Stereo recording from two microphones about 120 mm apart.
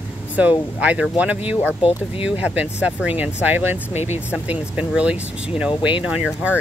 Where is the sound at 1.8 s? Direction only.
50° left (ahead or behind).